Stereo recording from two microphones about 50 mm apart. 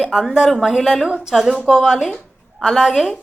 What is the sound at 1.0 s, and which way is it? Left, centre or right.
A woman's voice, centre.